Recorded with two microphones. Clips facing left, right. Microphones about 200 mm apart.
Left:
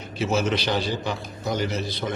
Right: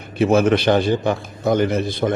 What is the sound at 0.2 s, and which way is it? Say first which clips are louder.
A man's voice: right 9 dB; 55° right (ahead or behind).